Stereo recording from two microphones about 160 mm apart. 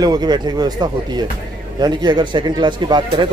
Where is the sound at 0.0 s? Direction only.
25° right (ahead or behind).